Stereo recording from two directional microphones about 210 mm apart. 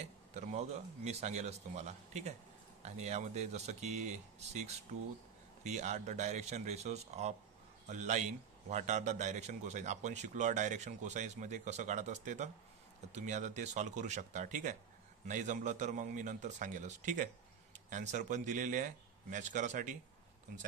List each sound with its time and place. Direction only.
0.0 s a man's voice: 35° right (ahead or behind)